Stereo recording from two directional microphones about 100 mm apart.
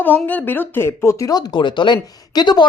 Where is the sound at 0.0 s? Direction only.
20° left (ahead or behind).